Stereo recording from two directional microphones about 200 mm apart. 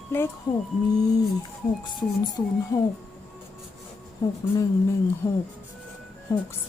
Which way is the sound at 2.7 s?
20° left (ahead or behind).